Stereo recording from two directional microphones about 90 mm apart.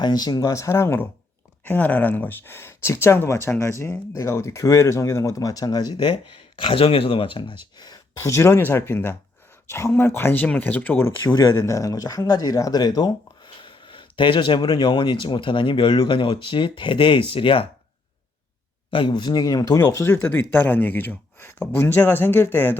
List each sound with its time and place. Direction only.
0.0 s speech: 50° left (ahead or behind); by 1.0 s 30° left (ahead or behind)
1.6 s speech: 20° left (ahead or behind); by 5.9 s 45° left (ahead or behind)
5.9 s speech: 70° left (ahead or behind)
18.9 s speech: 65° left (ahead or behind); by 19.8 s 45° left (ahead or behind)
20.1 s speech: 25° left (ahead or behind)